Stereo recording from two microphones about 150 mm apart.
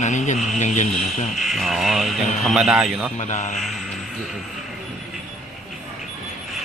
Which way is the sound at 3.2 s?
50° left (ahead or behind).